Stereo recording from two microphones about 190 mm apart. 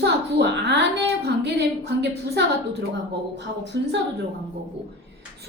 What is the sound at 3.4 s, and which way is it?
Speech, 65° right (ahead or behind).